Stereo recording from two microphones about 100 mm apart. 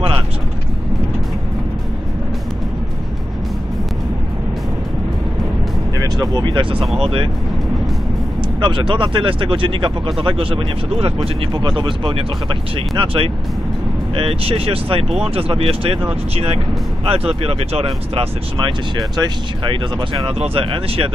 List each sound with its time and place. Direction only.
5.9 s speech: 40° right (ahead or behind); by 7.2 s 60° right (ahead or behind)
8.5 s speech: 55° right (ahead or behind); by 11.2 s 70° right (ahead or behind)
11.5 s speech: 50° right (ahead or behind); by 16.0 s 70° right (ahead or behind)
17.0 s speech: 75° right (ahead or behind)
18.6 s speech: 45° right (ahead or behind)
20.2 s speech: 70° right (ahead or behind)